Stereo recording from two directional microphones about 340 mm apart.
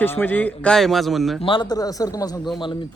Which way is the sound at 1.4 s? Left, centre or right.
Centre.